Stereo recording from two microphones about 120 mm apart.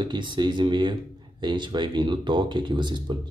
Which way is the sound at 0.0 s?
40° right (ahead or behind).